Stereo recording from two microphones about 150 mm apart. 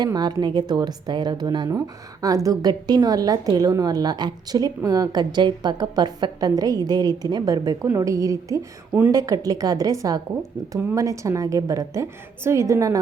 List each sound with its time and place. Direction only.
0.0 s a woman's voice: 25° right (ahead or behind)
8.9 s a woman's voice: 10° right (ahead or behind)
9.1 s a woman's voice: 25° right (ahead or behind)